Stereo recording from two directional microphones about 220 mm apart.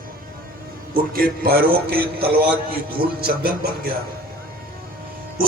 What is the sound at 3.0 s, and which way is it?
Speech, 45° right (ahead or behind).